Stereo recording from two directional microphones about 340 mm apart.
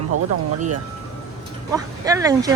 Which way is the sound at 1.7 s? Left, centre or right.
Centre.